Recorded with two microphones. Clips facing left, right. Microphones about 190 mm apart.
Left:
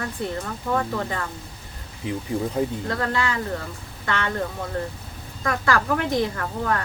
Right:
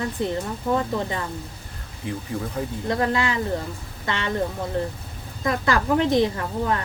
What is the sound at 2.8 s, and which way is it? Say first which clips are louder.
A woman's voice: right 2 dB; 20° right (ahead or behind).